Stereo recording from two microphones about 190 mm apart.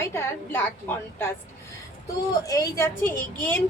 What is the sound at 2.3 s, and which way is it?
A woman's voice, 20° left (ahead or behind).